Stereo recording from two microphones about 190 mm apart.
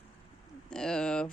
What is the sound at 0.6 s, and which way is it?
Speech, 5° left (ahead or behind).